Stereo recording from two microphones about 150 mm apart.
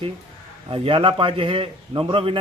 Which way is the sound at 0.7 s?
35° right (ahead or behind).